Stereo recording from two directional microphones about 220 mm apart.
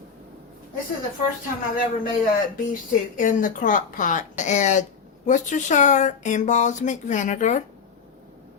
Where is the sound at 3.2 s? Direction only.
35° left (ahead or behind).